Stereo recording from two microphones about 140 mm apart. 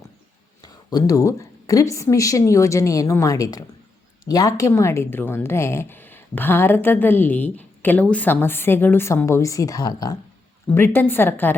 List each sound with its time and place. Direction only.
0.6 s speech: 30° left (ahead or behind)
10.8 s speech: 15° left (ahead or behind)